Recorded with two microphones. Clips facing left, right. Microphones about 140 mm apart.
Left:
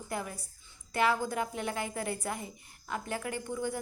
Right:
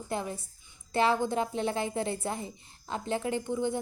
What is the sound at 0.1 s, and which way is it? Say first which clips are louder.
A woman's voice: right 4 dB; 25° right (ahead or behind).